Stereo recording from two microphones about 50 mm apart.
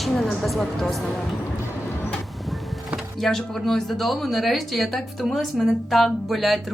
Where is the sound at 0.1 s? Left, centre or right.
Centre.